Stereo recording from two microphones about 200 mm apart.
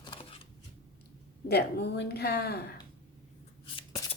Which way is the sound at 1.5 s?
55° left (ahead or behind).